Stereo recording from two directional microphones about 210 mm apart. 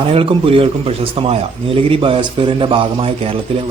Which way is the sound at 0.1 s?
25° right (ahead or behind).